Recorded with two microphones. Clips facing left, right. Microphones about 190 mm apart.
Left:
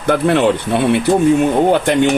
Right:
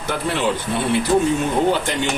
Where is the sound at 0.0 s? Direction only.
60° left (ahead or behind).